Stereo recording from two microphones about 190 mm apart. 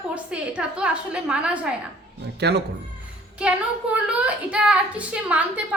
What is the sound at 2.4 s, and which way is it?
Speech, 60° right (ahead or behind).